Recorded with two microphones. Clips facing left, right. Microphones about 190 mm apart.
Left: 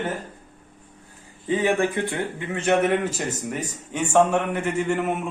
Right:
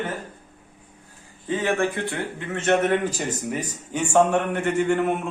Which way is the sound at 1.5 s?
15° left (ahead or behind).